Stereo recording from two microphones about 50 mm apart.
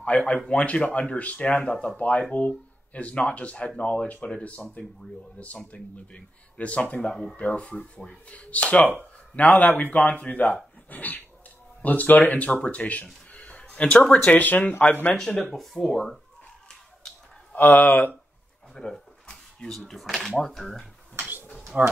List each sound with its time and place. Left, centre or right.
0.0 s speech: left
5.7 s a man's voice: left
10.9 s dog: left
11.8 s speech: left
14.3 s a man's voice: left
15.1 s speech: centre
15.5 s speech: centre
17.6 s a man's voice: left
18.8 s speech: centre
21.2 s a sound: right
21.7 s speech: right